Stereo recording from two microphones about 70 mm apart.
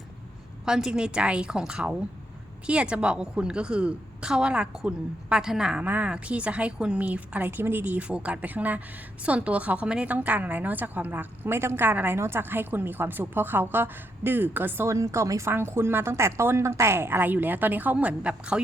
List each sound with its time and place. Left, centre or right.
0.6 s a woman's voice: centre
5.8 s speech: right
14.8 s speech: right; by 18.6 s centre